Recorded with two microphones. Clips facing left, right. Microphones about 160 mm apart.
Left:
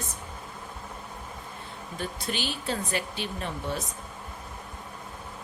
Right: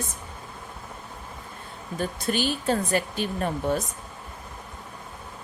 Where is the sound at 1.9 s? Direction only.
45° right (ahead or behind).